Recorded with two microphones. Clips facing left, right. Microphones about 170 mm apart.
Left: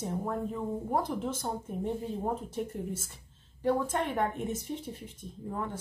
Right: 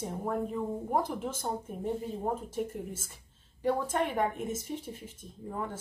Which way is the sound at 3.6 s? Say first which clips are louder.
Even; 10° right (ahead or behind).